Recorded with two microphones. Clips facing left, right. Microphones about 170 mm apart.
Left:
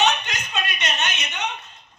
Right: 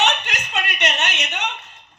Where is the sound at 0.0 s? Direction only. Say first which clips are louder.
Even; 75° right (ahead or behind).